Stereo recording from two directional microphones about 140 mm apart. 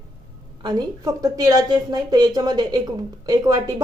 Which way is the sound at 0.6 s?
30° right (ahead or behind).